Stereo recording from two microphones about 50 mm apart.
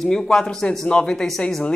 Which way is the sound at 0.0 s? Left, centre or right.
Centre.